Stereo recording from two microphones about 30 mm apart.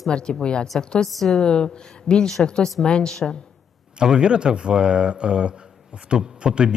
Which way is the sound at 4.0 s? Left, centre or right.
Right.